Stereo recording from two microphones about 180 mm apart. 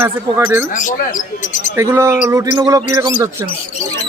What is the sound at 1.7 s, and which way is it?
Speech, 15° right (ahead or behind).